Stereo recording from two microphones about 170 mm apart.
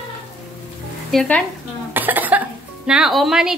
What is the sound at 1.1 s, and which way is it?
Speech, 5° left (ahead or behind).